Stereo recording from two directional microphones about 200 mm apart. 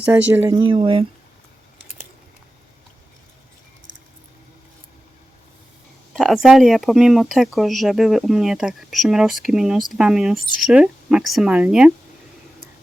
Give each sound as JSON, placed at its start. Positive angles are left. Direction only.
{"t": 0.0, "sound": "speech", "side_deg": -10}
{"t": 0.6, "sound": "speech", "side_deg": -25}
{"t": 6.1, "sound": "speech", "side_deg": 0}